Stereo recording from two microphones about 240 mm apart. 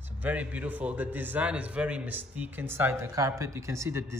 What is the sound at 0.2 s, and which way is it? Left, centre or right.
A man's voice, centre.